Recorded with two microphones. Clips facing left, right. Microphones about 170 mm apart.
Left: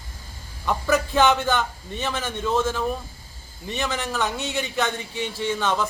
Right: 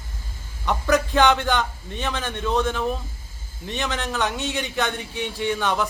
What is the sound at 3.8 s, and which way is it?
A man's voice, centre (ahead or behind).